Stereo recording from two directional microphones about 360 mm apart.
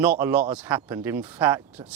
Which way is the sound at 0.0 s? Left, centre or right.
Centre.